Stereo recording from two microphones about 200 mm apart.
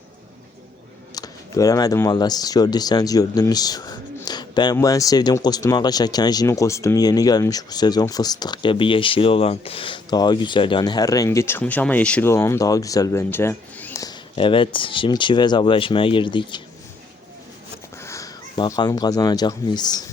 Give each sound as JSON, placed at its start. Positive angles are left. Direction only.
{"t": 1.1, "sound": "speech", "side_deg": 20}
{"t": 17.9, "sound": "speech", "side_deg": 15}